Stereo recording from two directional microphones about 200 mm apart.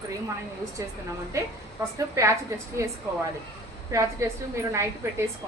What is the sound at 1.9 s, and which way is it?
Speech, 15° right (ahead or behind).